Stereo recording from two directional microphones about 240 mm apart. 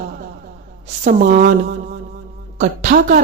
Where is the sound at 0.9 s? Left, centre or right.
Right.